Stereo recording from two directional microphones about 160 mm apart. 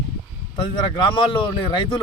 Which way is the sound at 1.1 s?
30° left (ahead or behind).